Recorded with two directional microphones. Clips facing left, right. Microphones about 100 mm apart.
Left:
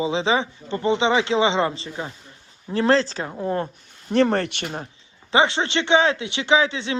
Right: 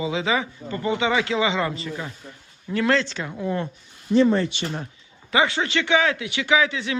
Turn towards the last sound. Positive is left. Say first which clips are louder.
# left 2 dB
turn(degrees=30)  # may be behind; listen again after turning